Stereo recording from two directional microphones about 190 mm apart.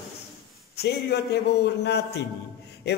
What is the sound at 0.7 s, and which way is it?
A man's voice, 60° left (ahead or behind).